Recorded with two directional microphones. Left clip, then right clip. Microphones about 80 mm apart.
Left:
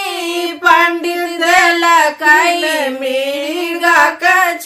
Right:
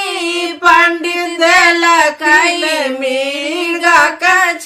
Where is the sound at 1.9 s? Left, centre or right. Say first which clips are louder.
Even; left.